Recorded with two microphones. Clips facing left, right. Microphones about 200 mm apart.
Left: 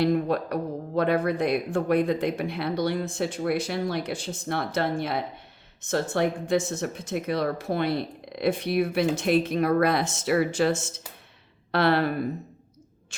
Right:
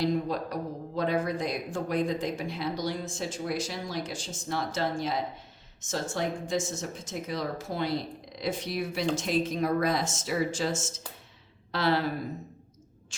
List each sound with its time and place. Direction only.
0.0 s speech: 60° left (ahead or behind)